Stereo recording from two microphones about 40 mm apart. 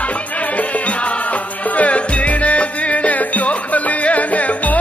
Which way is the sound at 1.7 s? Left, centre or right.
Left.